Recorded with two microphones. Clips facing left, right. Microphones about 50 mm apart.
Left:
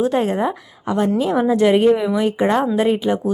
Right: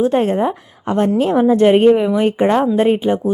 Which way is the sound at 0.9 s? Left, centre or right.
Right.